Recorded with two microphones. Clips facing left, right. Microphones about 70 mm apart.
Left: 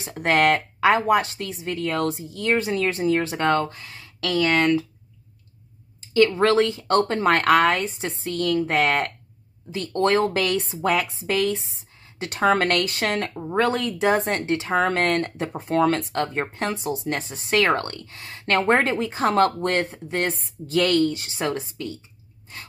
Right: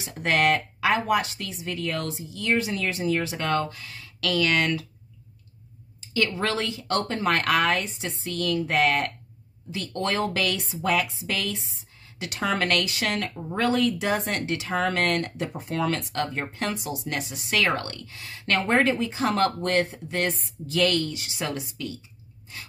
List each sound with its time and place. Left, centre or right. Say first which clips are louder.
0.0 s speech: left 3 dB; left
5.9 s a woman's voice: left 8 dB; left